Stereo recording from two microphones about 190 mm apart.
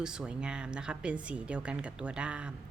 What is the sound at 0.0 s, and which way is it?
A woman's voice, 5° right (ahead or behind).